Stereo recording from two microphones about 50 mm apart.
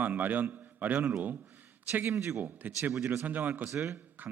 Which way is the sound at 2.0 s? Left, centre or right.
Right.